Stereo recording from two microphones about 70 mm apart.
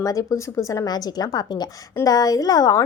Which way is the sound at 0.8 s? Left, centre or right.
Left.